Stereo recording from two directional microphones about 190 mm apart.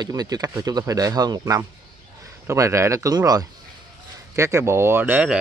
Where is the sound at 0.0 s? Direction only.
20° right (ahead or behind).